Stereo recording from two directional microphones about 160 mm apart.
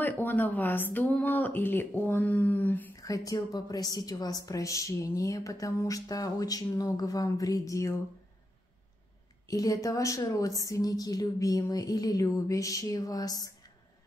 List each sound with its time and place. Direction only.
0.0 s speech: 10° left (ahead or behind)
9.5 s speech: 20° left (ahead or behind)